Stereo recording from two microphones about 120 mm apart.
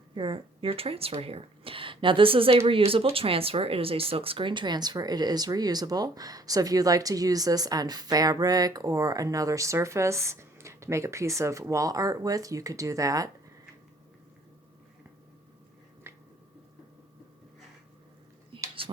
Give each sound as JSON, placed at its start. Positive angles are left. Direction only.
{"t": 0.1, "sound": "speech", "side_deg": -40}
{"t": 16.1, "sound": "squish", "side_deg": -20}
{"t": 18.5, "sound": "a sound", "side_deg": -45}